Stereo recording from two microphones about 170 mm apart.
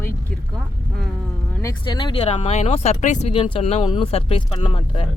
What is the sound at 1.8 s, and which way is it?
Speech, 30° left (ahead or behind).